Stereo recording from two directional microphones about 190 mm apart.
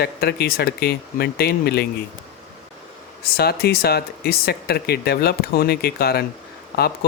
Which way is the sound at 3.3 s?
55° left (ahead or behind).